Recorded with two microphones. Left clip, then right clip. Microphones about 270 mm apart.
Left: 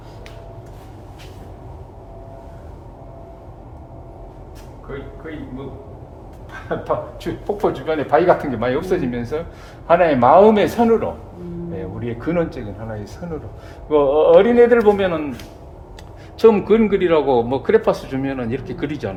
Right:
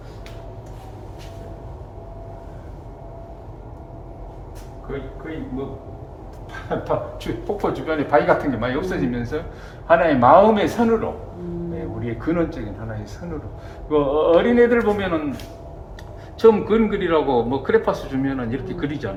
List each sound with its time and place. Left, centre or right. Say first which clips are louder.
6.8 s speech: left 2 dB; left
12.2 s speech: left 2 dB; left
13.9 s speech: left 5 dB; left
16.4 s speech: left 2 dB; left